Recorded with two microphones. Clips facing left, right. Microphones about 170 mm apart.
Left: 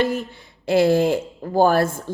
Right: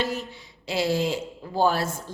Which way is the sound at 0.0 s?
50° left (ahead or behind).